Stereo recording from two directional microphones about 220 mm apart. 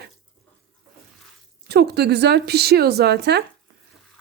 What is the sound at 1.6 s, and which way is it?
Speech, 45° right (ahead or behind).